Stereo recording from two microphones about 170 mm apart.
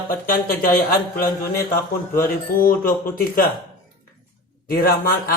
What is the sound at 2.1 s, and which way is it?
Mantra, 55° left (ahead or behind).